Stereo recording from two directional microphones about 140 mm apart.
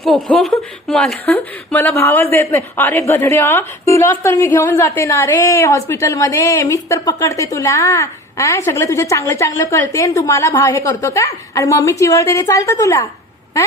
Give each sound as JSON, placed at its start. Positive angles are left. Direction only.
{"t": 0.0, "sound": "a woman's voice", "side_deg": 0}